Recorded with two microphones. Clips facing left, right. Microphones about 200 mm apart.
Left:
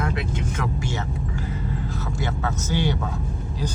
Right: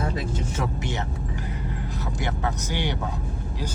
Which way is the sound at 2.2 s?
15° right (ahead or behind).